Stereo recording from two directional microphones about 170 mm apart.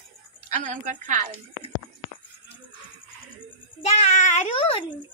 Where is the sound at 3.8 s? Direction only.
40° left (ahead or behind).